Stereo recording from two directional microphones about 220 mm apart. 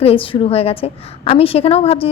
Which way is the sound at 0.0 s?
25° left (ahead or behind).